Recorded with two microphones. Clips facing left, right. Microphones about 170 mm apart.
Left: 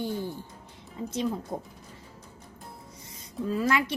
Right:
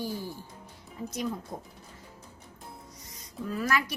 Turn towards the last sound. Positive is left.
turn(degrees=25)  # may be behind; listen again after turning